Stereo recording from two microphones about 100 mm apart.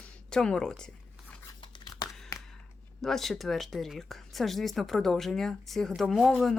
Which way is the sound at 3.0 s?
5° left (ahead or behind).